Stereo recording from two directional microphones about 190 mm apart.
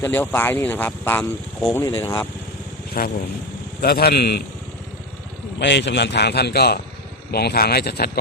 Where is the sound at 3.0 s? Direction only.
50° left (ahead or behind).